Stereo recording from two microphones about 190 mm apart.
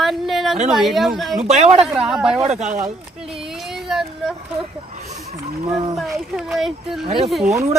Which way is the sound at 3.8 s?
Centre (ahead or behind).